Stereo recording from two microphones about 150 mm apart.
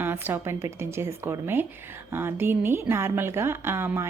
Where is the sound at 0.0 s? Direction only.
15° right (ahead or behind).